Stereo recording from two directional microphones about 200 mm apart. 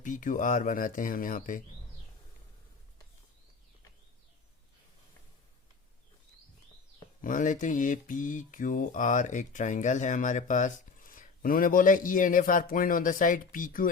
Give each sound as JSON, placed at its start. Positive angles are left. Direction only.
{"t": 0.0, "sound": "speech", "side_deg": 40}
{"t": 7.2, "sound": "speech", "side_deg": 40}